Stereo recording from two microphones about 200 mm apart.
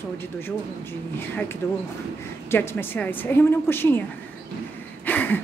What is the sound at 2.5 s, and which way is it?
A woman's voice, 10° left (ahead or behind).